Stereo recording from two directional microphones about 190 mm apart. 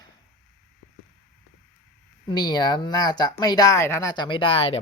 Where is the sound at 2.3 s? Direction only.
20° left (ahead or behind).